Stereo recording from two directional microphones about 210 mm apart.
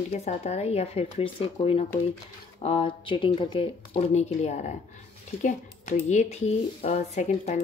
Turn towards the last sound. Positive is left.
turn(degrees=35)  # may be behind; listen again after turning